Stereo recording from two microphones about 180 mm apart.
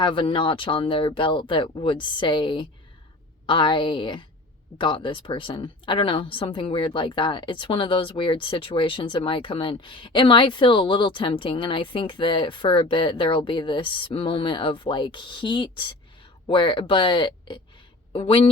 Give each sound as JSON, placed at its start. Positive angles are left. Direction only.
{"t": 0.0, "sound": "a woman's voice", "side_deg": 25}